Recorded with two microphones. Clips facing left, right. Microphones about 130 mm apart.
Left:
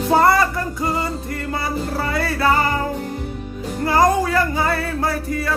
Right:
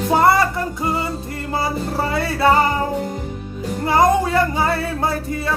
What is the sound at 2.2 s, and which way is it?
Music, 25° right (ahead or behind).